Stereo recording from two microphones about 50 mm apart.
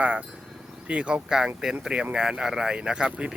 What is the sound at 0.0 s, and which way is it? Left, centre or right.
Speech, right.